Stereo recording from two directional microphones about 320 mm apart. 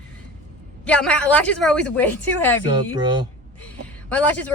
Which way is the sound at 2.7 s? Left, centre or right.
Centre.